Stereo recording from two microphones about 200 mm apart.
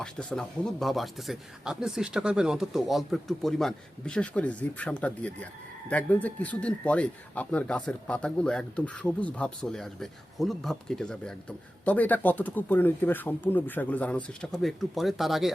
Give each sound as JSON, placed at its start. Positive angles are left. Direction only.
{"t": 0.0, "sound": "speech", "side_deg": 5}